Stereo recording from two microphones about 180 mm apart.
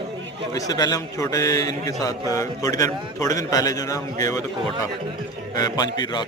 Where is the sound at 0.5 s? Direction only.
20° left (ahead or behind).